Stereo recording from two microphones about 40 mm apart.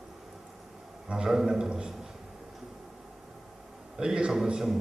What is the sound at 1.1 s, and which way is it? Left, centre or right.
Speech, centre.